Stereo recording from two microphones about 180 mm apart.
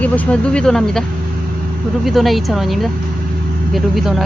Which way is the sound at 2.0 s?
Centre (ahead or behind).